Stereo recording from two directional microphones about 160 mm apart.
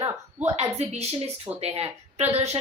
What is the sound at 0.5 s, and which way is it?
A woman's voice, 45° right (ahead or behind).